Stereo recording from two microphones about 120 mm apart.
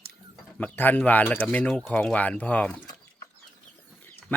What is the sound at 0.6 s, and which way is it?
Speech, 15° left (ahead or behind).